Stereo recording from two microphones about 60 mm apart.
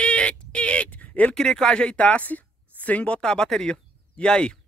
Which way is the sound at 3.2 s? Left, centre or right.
Centre.